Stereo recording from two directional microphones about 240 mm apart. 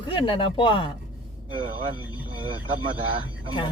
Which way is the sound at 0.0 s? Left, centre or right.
Centre.